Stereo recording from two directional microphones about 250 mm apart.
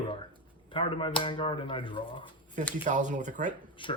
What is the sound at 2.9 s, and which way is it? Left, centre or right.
Speech, right.